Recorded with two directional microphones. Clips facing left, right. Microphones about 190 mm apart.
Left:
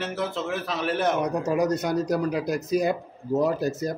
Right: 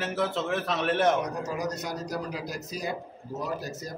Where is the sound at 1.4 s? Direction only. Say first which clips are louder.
Left 8 dB; 60° left (ahead or behind).